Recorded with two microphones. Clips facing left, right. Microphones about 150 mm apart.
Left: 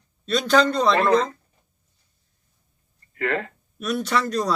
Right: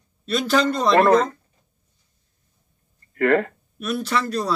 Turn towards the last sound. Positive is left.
turn(degrees=0)  # may be behind; listen again after turning